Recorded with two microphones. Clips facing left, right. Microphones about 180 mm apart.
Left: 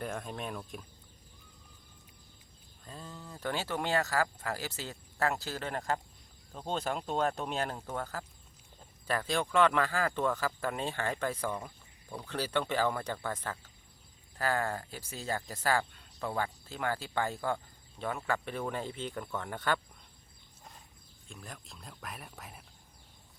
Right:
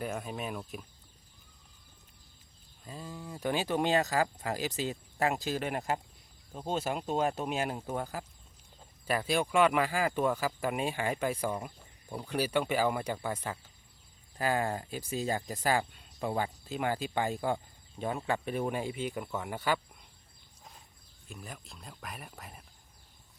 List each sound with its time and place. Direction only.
0.0 s speech: 5° right (ahead or behind)
2.8 s speech: 10° right (ahead or behind)
21.2 s speech: 5° right (ahead or behind)